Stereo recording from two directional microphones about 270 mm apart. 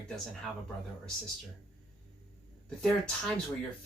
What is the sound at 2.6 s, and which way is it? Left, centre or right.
Speech, centre.